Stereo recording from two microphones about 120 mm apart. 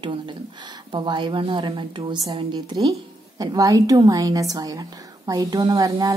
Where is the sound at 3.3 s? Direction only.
30° right (ahead or behind).